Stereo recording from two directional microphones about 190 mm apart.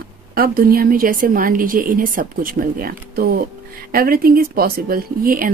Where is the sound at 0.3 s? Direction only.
50° right (ahead or behind).